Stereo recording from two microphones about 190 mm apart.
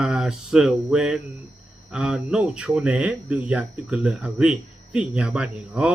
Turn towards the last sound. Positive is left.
turn(degrees=-5)  # may be behind; listen again after turning